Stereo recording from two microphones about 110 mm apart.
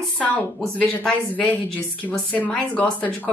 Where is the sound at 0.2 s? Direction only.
15° left (ahead or behind).